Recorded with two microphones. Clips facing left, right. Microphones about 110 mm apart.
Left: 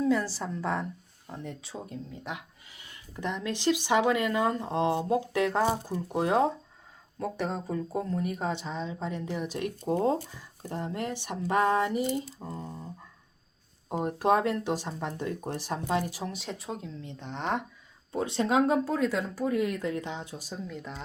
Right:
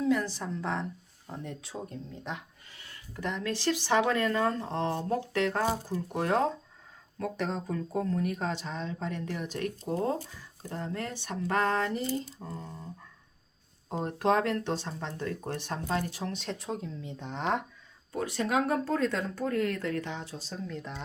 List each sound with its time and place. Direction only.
0.0 s speech: 5° left (ahead or behind)
13.9 s speech: 10° left (ahead or behind)
18.1 s speech: 25° left (ahead or behind)
18.9 s speech: 5° left (ahead or behind)